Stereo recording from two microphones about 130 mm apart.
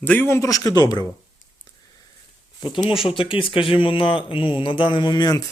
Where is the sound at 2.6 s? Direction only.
35° left (ahead or behind).